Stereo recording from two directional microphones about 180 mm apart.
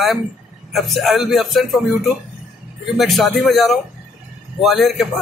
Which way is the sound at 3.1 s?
Centre (ahead or behind).